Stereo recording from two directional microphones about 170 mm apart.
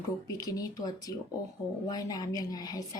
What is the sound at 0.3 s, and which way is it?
A woman's voice, 20° left (ahead or behind).